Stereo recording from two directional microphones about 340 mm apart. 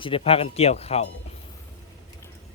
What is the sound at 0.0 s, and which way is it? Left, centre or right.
Speech, centre.